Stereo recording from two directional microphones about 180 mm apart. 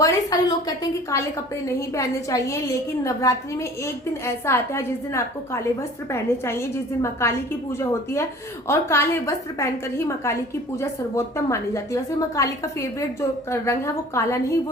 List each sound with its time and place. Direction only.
0.0 s a woman's voice: 20° left (ahead or behind)